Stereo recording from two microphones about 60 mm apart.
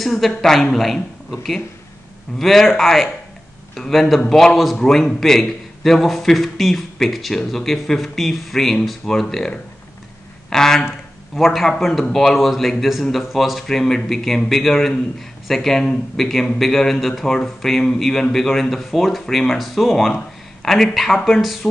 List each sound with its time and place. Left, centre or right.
0.0 s a man's voice: centre
2.3 s a man's voice: centre